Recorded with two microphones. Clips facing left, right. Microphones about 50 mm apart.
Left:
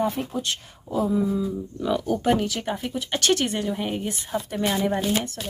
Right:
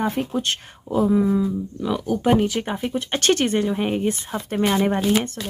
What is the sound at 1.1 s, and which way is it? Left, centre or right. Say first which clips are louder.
Speech: right 5 dB; right.